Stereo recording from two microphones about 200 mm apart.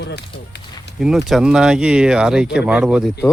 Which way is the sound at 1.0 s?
Centre (ahead or behind).